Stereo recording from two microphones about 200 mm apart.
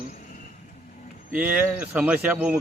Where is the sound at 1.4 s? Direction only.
10° right (ahead or behind).